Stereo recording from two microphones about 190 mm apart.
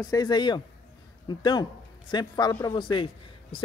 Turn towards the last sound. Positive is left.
turn(degrees=25)  # may be behind; listen again after turning